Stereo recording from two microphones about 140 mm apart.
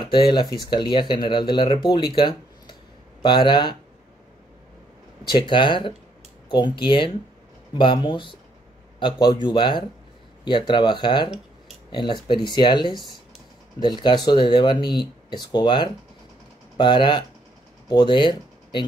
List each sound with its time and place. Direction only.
0.0 s speech: 35° left (ahead or behind)
5.2 s speech: 35° left (ahead or behind)